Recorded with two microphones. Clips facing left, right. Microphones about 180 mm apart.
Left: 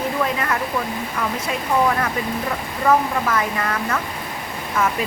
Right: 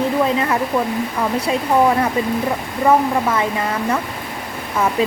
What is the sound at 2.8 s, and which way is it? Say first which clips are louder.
Speech: right 3 dB; 25° right (ahead or behind).